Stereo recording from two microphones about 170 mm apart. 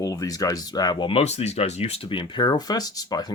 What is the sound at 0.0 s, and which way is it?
Speech, 20° left (ahead or behind).